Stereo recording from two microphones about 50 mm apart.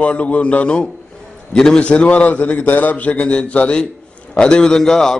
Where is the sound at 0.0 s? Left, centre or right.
Left.